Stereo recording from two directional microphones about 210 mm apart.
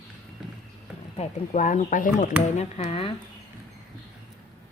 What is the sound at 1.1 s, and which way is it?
A woman's voice, 35° left (ahead or behind).